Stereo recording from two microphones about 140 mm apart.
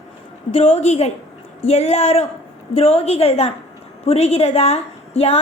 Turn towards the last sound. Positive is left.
turn(degrees=45)  # may be behind; listen again after turning